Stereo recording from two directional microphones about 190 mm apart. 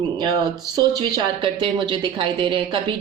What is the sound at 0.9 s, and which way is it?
A woman's voice, 25° right (ahead or behind).